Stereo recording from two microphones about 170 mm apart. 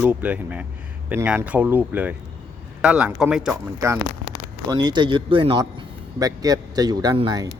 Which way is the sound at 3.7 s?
15° right (ahead or behind).